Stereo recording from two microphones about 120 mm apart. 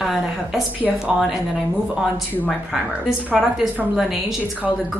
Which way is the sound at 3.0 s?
Centre (ahead or behind).